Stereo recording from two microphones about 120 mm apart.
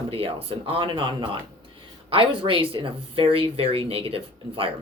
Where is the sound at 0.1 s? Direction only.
50° right (ahead or behind).